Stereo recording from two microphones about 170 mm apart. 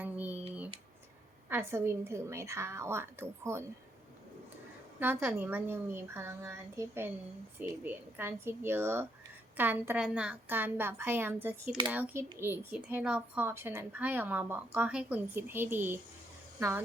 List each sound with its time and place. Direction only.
0.0 s typing: 10° right (ahead or behind)
1.5 s speech: 15° right (ahead or behind)
4.9 s speech: 10° right (ahead or behind)